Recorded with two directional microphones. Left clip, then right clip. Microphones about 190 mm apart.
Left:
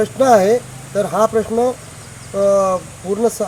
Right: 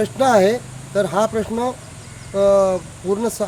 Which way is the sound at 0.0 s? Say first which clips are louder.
Left 3 dB; 15° right (ahead or behind).